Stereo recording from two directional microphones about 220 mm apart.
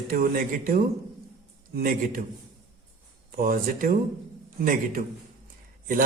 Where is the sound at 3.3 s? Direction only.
40° right (ahead or behind).